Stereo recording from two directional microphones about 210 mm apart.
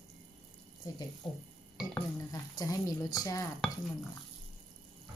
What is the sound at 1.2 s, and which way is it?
Dishes, 20° left (ahead or behind).